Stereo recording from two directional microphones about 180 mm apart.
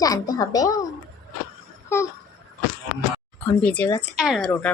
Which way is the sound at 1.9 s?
15° left (ahead or behind).